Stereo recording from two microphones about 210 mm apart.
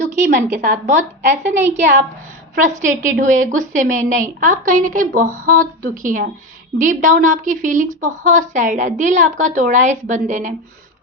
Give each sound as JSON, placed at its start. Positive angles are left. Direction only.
{"t": 0.0, "sound": "a woman's voice", "side_deg": -35}
{"t": 1.5, "sound": "a woman's voice", "side_deg": -10}
{"t": 2.6, "sound": "a woman's voice", "side_deg": -35}